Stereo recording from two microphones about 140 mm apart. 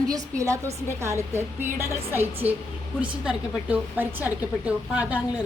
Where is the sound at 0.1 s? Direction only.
25° right (ahead or behind).